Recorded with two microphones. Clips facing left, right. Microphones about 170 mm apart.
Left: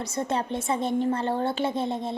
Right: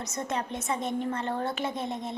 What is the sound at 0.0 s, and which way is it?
A woman's voice, 30° left (ahead or behind).